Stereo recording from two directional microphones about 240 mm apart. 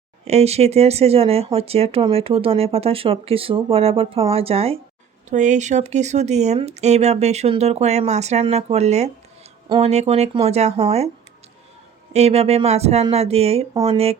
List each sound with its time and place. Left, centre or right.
0.3 s speech: right
12.1 s speech: right